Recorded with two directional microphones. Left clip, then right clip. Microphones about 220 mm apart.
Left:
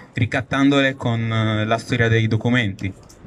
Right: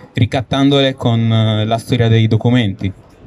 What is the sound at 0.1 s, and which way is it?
Speech, 20° right (ahead or behind).